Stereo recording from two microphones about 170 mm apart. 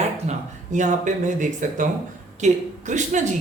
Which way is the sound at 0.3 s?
45° right (ahead or behind).